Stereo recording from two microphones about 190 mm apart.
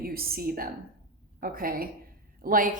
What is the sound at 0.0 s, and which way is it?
A woman's voice, 50° right (ahead or behind).